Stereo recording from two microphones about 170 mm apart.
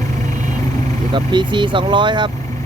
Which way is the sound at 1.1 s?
25° right (ahead or behind).